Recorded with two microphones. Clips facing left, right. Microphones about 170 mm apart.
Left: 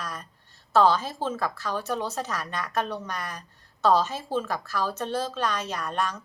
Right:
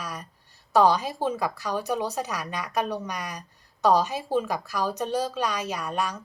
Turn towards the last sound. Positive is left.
turn(degrees=-10)  # may be behind; listen again after turning